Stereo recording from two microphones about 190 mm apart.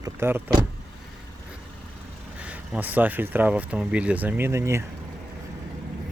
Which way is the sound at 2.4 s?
10° right (ahead or behind).